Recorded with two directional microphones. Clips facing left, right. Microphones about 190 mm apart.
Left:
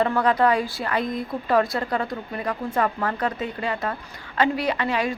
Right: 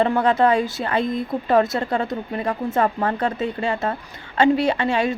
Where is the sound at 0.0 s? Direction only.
25° right (ahead or behind).